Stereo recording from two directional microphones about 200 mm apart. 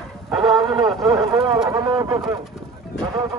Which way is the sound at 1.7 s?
20° right (ahead or behind).